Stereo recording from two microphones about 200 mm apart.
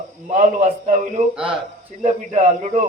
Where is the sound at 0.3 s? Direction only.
35° right (ahead or behind).